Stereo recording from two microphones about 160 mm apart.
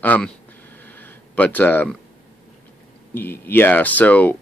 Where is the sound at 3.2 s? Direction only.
10° left (ahead or behind).